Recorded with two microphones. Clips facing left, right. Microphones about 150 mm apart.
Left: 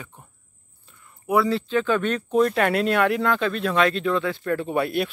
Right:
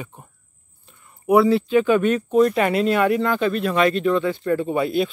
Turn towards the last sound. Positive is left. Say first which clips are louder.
# right 3 dB
turn(degrees=0)  # may be behind; listen again after turning